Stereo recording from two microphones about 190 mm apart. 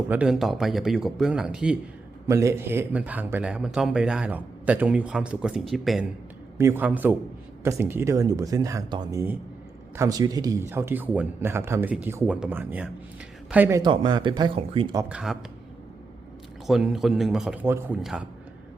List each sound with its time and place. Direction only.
0.1 s a man's voice: 5° right (ahead or behind)
6.6 s speech: 10° right (ahead or behind)
15.1 s a man's voice: centre (ahead or behind)
16.6 s a man's voice: centre (ahead or behind)